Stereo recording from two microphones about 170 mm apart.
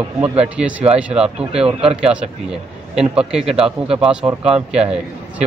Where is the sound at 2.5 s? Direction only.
5° right (ahead or behind).